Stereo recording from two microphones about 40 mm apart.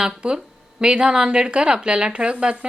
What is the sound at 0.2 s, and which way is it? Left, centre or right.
Speech, right.